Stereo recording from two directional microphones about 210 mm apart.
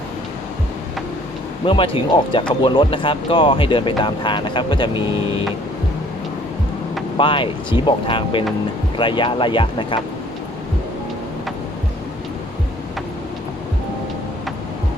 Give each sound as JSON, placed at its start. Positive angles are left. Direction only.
{"t": 1.6, "sound": "speech", "side_deg": 25}
{"t": 7.2, "sound": "speech", "side_deg": 25}